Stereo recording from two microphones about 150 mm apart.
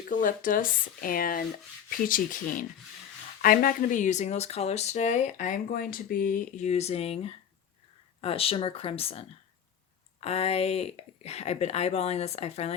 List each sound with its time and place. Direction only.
0.1 s speech: 65° left (ahead or behind); by 12.7 s 45° left (ahead or behind)